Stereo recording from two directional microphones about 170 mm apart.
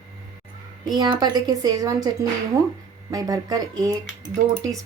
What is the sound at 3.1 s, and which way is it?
Speech, 20° right (ahead or behind).